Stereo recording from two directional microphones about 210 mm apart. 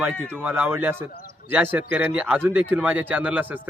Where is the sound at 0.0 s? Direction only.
10° right (ahead or behind).